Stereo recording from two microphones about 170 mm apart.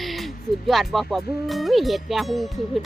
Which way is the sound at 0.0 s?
Centre (ahead or behind).